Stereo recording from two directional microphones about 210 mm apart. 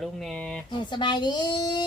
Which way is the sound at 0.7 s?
20° left (ahead or behind).